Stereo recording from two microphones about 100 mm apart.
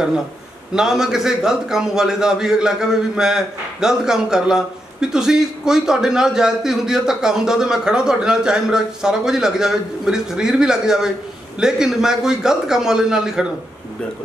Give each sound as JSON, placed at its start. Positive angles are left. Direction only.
{"t": 0.7, "sound": "a man's voice", "side_deg": -5}